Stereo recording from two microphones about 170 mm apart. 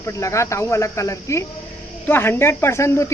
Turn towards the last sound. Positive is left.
turn(degrees=15)  # may be behind; listen again after turning